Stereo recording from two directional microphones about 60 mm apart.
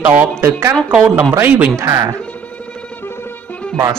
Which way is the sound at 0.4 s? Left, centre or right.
Right.